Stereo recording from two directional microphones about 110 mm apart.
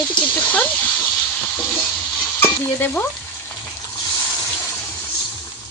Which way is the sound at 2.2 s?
20° left (ahead or behind).